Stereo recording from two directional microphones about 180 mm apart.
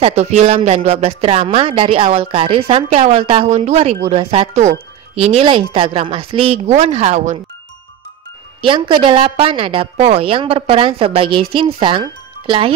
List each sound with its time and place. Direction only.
0.0 s speech: 35° right (ahead or behind)
8.5 s a woman's voice: 30° right (ahead or behind)